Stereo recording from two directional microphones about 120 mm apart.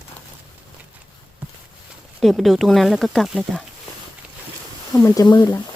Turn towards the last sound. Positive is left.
turn(degrees=35)  # may be behind; listen again after turning